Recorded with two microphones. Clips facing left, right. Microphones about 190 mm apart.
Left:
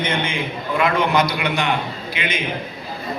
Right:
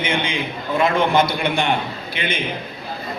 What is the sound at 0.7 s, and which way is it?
Speech, 25° right (ahead or behind).